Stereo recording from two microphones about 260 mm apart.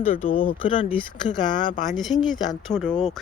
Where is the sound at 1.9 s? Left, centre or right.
Centre.